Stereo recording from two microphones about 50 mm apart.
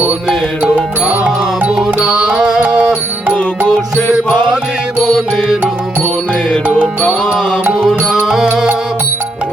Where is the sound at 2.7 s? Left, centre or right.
Right.